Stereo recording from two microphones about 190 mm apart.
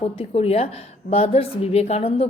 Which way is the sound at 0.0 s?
30° left (ahead or behind).